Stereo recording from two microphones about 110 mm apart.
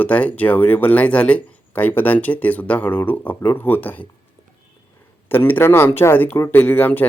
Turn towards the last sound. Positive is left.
turn(degrees=15)  # may be behind; listen again after turning